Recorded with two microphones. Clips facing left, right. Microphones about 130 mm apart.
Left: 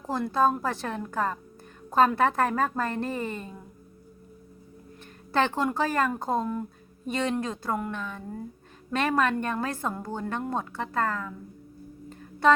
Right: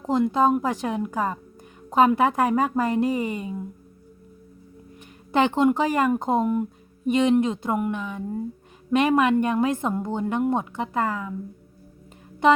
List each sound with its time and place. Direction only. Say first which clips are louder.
0.0 s speech: right 4 dB; 20° right (ahead or behind)
5.3 s speech: right 6 dB; 15° right (ahead or behind)
12.4 s speech: right 3 dB; 15° right (ahead or behind)